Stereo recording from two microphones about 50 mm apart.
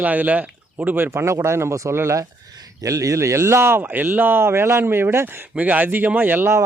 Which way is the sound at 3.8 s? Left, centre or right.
Right.